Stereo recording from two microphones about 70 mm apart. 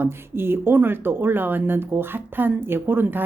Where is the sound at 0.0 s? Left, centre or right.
Right.